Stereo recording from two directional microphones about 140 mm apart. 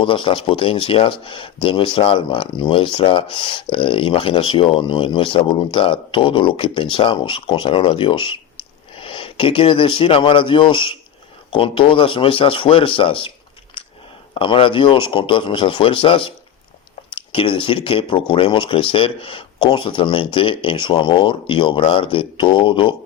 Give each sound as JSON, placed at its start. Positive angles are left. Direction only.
{"t": 0.0, "sound": "speech", "side_deg": 35}
{"t": 14.3, "sound": "speech", "side_deg": 40}